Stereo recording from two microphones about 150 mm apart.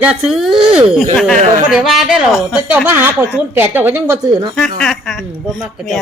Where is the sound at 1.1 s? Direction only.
5° left (ahead or behind); by 4.4 s 20° right (ahead or behind).